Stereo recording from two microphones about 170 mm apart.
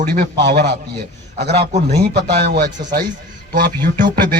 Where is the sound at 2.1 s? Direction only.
70° right (ahead or behind).